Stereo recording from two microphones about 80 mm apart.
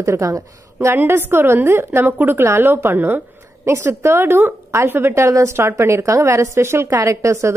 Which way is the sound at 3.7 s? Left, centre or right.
Right.